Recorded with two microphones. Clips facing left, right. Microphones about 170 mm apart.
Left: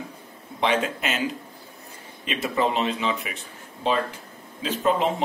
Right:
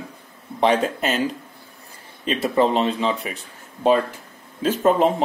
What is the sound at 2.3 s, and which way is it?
A man's voice, 35° right (ahead or behind).